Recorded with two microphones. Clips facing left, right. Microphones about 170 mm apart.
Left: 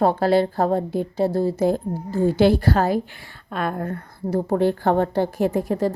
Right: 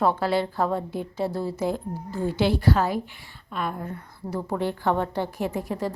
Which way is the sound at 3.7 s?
65° left (ahead or behind).